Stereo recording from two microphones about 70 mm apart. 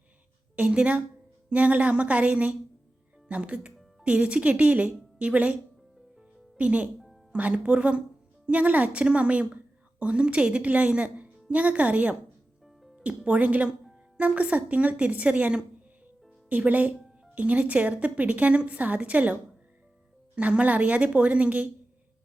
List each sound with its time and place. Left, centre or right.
0.5 s a woman's voice: centre
6.6 s a woman's voice: centre
12.6 s music: centre
13.0 s a woman's voice: centre